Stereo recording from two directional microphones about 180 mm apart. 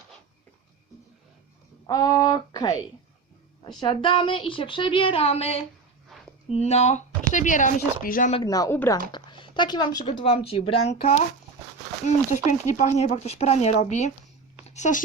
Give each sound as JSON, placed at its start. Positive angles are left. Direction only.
{"t": 1.9, "sound": "a woman's voice", "side_deg": 20}
{"t": 8.4, "sound": "a woman's voice", "side_deg": 20}
{"t": 9.1, "sound": "speech", "side_deg": 25}